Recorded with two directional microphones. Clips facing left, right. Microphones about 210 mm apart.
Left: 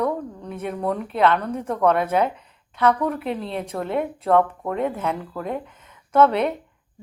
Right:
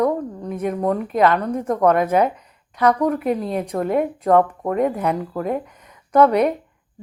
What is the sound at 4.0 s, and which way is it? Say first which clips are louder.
A woman's voice: right 2 dB; 5° right (ahead or behind).